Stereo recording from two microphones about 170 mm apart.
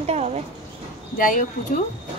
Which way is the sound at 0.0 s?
40° right (ahead or behind).